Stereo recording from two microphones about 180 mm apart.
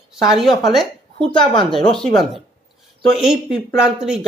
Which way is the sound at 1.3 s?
25° left (ahead or behind).